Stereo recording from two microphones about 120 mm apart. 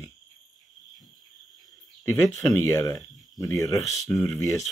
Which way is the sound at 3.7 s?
Centre (ahead or behind).